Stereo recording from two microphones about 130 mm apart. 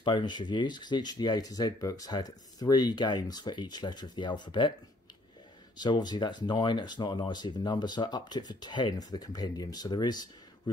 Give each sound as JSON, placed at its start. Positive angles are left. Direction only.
{"t": 0.0, "sound": "speech", "side_deg": 35}
{"t": 5.8, "sound": "speech", "side_deg": 35}